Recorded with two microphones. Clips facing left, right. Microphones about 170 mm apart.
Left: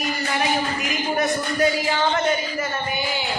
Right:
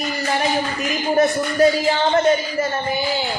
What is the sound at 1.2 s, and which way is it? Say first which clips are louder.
Speech: right 6 dB; 35° right (ahead or behind).